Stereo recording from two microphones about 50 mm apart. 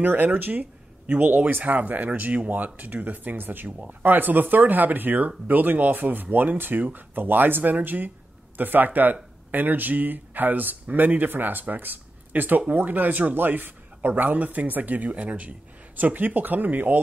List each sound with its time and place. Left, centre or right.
0.0 s speech: right